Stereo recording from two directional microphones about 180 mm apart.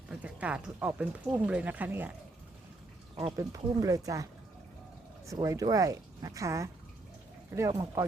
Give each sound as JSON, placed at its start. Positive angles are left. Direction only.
{"t": 0.1, "sound": "speech", "side_deg": -5}
{"t": 3.2, "sound": "speech", "side_deg": -20}
{"t": 5.3, "sound": "speech", "side_deg": -20}